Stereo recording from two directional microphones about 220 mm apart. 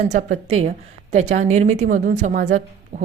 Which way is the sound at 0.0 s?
35° right (ahead or behind).